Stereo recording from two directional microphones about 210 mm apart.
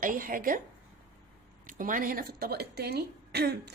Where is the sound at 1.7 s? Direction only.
40° right (ahead or behind).